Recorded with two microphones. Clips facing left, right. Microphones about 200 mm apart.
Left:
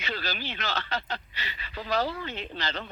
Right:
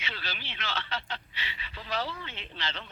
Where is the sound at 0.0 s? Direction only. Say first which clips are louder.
Left 7 dB; 40° left (ahead or behind).